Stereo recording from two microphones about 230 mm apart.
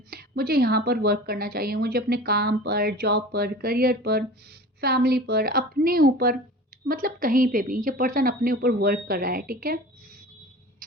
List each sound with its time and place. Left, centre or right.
0.1 s a woman's voice: right